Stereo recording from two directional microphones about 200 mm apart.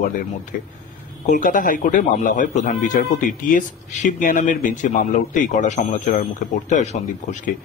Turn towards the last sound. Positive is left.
turn(degrees=35)  # may be behind; listen again after turning